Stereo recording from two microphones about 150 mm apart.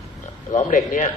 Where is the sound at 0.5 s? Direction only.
60° left (ahead or behind).